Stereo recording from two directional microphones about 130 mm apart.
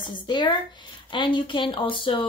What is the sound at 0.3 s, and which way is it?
Speech, 35° left (ahead or behind).